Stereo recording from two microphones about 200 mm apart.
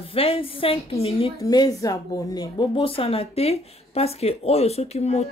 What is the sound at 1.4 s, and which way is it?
Speech, 20° left (ahead or behind).